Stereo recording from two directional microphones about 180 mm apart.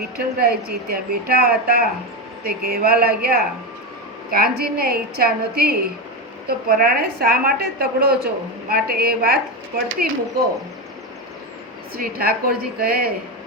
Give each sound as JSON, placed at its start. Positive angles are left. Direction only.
{"t": 0.3, "sound": "a woman's voice", "side_deg": -60}
{"t": 11.9, "sound": "a woman's voice", "side_deg": -55}